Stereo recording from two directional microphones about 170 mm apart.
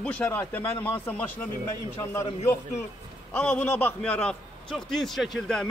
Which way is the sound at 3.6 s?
10° left (ahead or behind).